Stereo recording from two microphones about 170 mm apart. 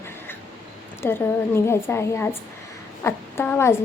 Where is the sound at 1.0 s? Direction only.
15° left (ahead or behind).